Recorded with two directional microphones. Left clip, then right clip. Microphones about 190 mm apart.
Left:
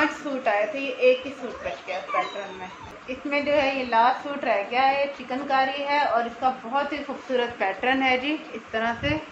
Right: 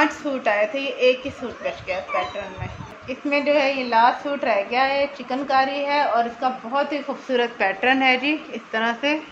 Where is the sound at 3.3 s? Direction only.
50° right (ahead or behind).